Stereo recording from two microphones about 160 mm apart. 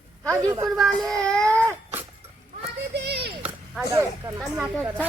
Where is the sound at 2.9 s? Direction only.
90° right.